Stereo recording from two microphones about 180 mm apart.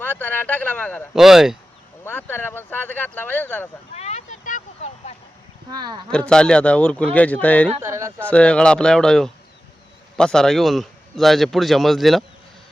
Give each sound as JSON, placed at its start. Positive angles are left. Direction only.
{"t": 0.0, "sound": "speech", "side_deg": 10}
{"t": 1.1, "sound": "a man's voice", "side_deg": 0}
{"t": 2.0, "sound": "speech", "side_deg": 10}
{"t": 3.9, "sound": "a sound", "side_deg": 40}
{"t": 6.1, "sound": "speech", "side_deg": 5}
{"t": 7.7, "sound": "speech", "side_deg": -15}
{"t": 8.3, "sound": "a man's voice", "side_deg": 5}